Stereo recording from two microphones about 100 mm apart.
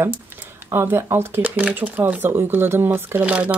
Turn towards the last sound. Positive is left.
turn(degrees=-15)  # may be behind; listen again after turning